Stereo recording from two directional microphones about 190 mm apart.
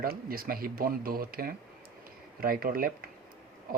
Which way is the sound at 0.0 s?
50° right (ahead or behind).